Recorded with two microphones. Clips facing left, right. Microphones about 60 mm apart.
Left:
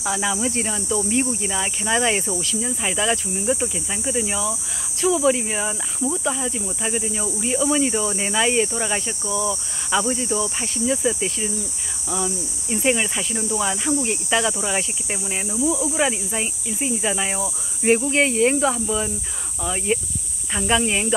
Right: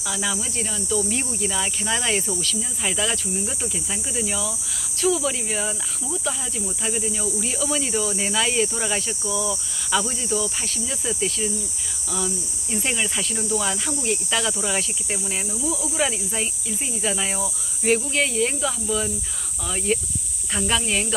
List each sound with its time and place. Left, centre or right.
0.4 s speech: left
1.0 s speech: centre
9.2 s speech: left
18.9 s speech: centre